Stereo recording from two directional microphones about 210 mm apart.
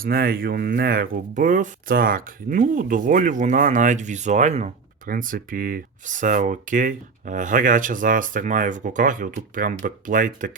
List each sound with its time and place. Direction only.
0.0 s speech: 45° right (ahead or behind)